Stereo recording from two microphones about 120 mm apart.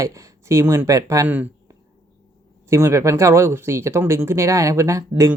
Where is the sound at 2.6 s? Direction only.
25° right (ahead or behind).